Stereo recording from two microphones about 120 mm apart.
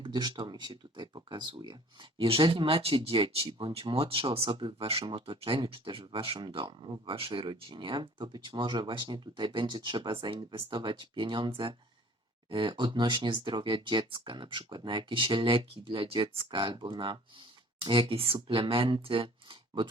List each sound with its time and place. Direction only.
0.0 s speech: 35° right (ahead or behind)